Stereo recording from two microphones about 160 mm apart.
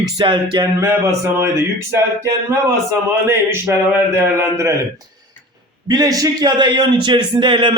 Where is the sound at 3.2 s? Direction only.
15° right (ahead or behind).